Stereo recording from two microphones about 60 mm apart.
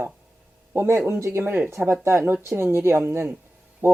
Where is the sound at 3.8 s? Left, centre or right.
Right.